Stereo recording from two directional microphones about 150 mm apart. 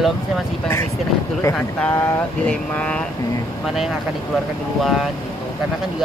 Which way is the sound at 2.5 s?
10° left (ahead or behind).